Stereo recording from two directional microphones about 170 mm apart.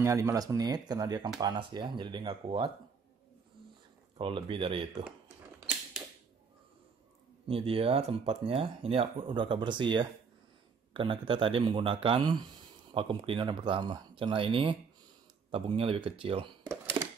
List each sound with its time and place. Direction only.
0.0 s speech: 20° right (ahead or behind)
4.2 s speech: 30° right (ahead or behind)
7.4 s speech: 35° right (ahead or behind)
17.0 s a sound: 25° right (ahead or behind)